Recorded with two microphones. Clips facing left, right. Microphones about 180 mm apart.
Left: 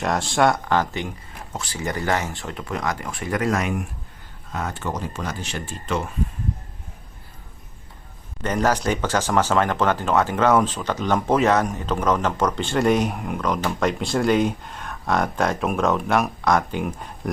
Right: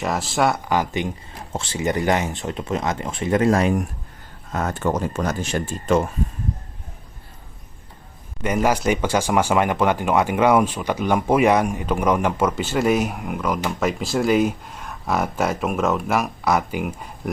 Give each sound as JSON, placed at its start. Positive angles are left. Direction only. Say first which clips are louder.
{"t": 0.0, "sound": "speech", "louder": "left 1 dB", "side_deg": 0}
{"t": 1.5, "sound": "speech", "louder": "right 5 dB", "side_deg": -25}
{"t": 4.5, "sound": "speech", "louder": "right 5 dB", "side_deg": -45}
{"t": 8.4, "sound": "speech", "louder": "right 1 dB", "side_deg": -10}